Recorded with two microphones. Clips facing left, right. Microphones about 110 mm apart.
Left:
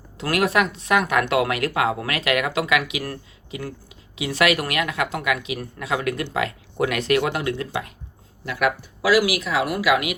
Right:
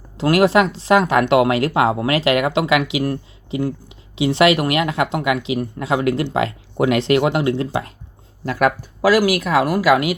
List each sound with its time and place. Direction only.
0.2 s speech: 30° right (ahead or behind)